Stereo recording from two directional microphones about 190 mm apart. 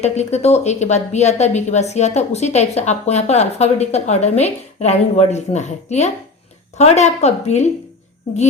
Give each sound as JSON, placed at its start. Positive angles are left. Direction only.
{"t": 0.0, "sound": "a woman's voice", "side_deg": 35}